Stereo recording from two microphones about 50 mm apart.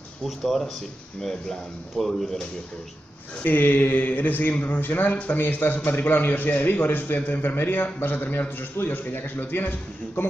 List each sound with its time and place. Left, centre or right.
0.2 s speech: centre
3.4 s a man's voice: left